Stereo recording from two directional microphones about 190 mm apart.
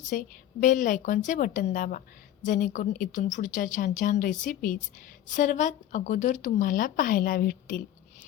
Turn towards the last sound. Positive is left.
turn(degrees=45)  # may be behind; listen again after turning